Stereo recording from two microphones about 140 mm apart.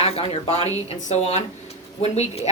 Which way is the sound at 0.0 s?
50° left (ahead or behind).